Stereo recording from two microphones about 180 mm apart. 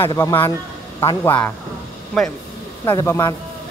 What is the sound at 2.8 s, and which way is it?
Speech, 15° left (ahead or behind).